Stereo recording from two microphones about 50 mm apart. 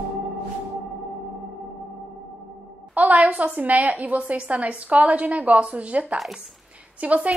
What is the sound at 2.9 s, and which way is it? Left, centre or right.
A woman's voice, right.